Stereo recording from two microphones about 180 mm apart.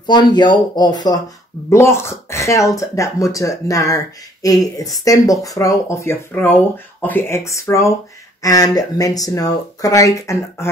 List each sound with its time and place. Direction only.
0.0 s speech: 25° left (ahead or behind)